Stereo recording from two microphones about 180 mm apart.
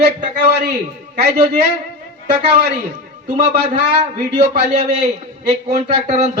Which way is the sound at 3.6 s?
35° right (ahead or behind).